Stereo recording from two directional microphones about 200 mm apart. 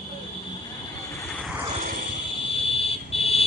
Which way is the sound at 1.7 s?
45° right (ahead or behind).